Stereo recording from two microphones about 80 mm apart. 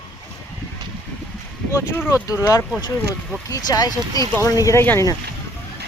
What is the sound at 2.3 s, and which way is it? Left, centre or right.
Speech, left.